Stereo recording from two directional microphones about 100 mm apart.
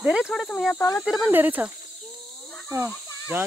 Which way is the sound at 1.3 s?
20° right (ahead or behind).